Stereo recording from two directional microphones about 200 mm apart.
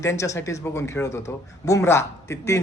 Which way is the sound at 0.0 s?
15° left (ahead or behind).